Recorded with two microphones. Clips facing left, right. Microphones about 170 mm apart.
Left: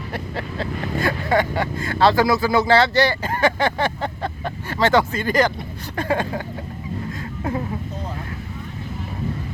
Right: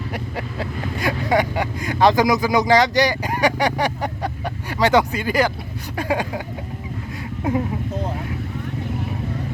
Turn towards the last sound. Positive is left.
turn(degrees=-20)  # may be behind; listen again after turning